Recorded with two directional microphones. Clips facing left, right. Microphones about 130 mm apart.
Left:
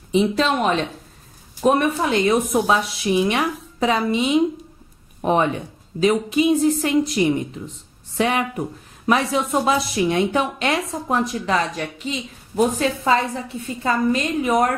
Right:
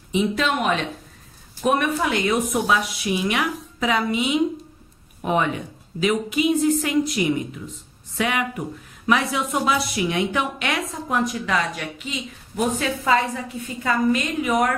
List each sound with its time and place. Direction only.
0.1 s speech: 30° left (ahead or behind)